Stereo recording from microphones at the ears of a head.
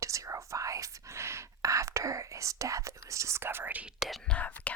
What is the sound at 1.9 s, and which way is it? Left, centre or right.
Speech, right.